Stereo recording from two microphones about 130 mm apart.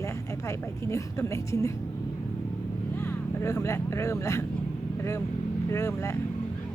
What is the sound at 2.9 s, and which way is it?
Speech, 20° left (ahead or behind).